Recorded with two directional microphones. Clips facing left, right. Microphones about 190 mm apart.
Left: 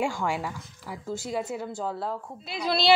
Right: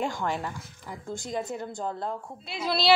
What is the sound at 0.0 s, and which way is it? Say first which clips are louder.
Speech: left 2 dB; 10° left (ahead or behind).